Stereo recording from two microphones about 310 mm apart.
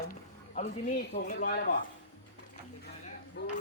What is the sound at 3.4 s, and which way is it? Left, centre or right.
Speech, left.